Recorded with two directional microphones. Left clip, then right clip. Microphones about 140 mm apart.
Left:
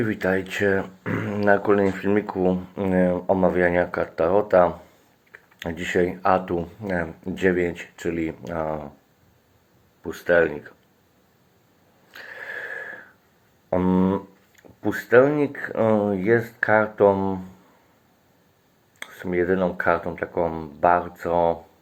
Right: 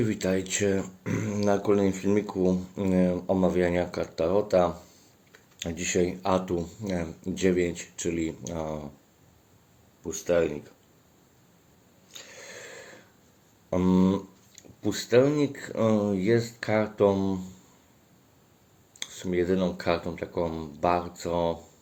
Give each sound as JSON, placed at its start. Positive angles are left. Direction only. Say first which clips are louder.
{"t": 0.0, "sound": "speech", "louder": "left 5 dB", "side_deg": -25}
{"t": 10.1, "sound": "speech", "louder": "left 6 dB", "side_deg": -20}
{"t": 12.2, "sound": "a sound", "louder": "left 12 dB", "side_deg": -20}
{"t": 13.7, "sound": "speech", "louder": "left 4 dB", "side_deg": -30}
{"t": 18.9, "sound": "speech", "louder": "left 4 dB", "side_deg": -30}